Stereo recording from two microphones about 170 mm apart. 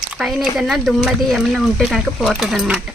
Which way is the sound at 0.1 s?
Centre (ahead or behind).